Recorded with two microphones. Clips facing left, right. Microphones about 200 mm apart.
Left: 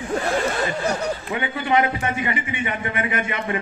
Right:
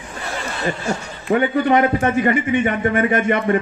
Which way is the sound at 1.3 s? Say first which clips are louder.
Right 7 dB; 45° right (ahead or behind).